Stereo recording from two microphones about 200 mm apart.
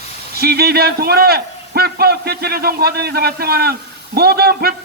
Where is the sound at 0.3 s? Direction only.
50° right (ahead or behind).